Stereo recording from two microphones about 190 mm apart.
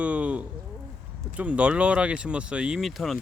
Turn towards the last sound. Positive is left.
turn(degrees=0)  # may be behind; listen again after turning